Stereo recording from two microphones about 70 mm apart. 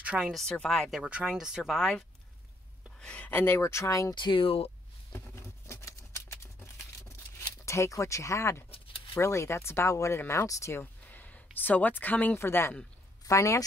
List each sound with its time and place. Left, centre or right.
0.0 s speech: centre
0.3 s speech: centre
0.8 s speech: centre
3.0 s a sound: centre
3.3 s speech: left
5.7 s a sound: left
9.2 s speech: left
10.8 s speech: left
12.4 s speech: left
13.3 s speech: left